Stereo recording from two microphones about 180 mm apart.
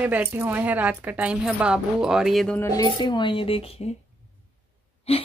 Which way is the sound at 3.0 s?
25° left (ahead or behind).